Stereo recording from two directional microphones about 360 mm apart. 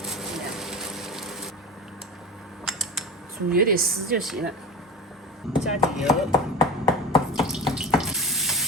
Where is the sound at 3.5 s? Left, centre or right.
Right.